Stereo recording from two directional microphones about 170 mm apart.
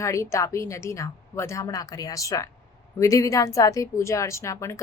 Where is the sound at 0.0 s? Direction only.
15° left (ahead or behind).